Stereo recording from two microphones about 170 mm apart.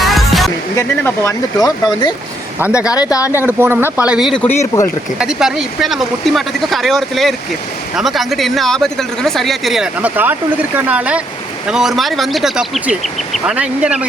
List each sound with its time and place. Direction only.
0.0 s music: centre (ahead or behind)
0.8 s speech: 15° left (ahead or behind)
3.3 s speech: 15° right (ahead or behind)
4.4 s speech: 15° left (ahead or behind)
5.2 s speech: 5° right (ahead or behind)